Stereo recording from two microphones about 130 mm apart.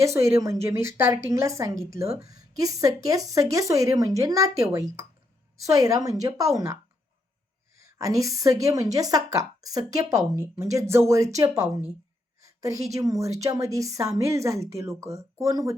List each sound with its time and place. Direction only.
0.0 s speech: 20° right (ahead or behind)
7.8 s speech: 25° right (ahead or behind)